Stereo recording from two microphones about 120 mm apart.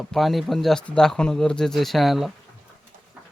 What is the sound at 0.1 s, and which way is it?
Speech, centre (ahead or behind).